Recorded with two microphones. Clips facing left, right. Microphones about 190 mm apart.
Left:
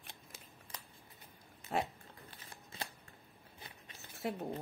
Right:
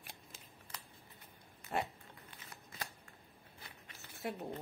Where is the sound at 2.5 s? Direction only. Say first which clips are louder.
Left 1 dB; 25° left (ahead or behind).